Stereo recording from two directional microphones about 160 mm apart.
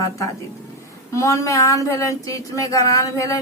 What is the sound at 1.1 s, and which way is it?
Speech, 20° left (ahead or behind).